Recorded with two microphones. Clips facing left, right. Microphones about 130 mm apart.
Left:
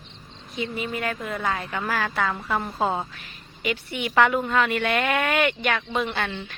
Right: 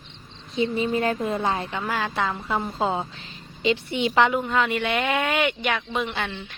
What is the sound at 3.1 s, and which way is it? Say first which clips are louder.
A woman's voice: right 3 dB; 25° right (ahead or behind).